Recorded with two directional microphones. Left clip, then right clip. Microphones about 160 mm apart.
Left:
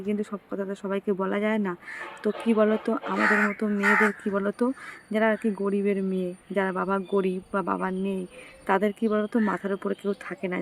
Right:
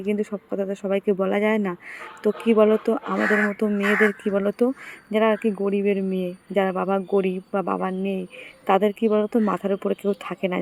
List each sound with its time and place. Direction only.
0.0 s speech: 15° right (ahead or behind)